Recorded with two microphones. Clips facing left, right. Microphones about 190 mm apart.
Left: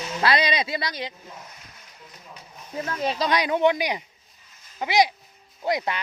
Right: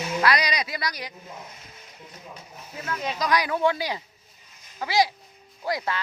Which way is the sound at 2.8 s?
30° left (ahead or behind).